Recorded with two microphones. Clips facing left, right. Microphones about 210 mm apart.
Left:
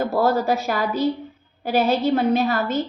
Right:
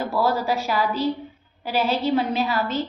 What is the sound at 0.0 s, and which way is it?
A woman's voice, 50° left (ahead or behind).